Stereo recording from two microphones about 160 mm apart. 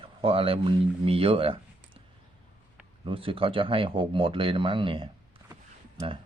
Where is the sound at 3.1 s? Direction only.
35° right (ahead or behind).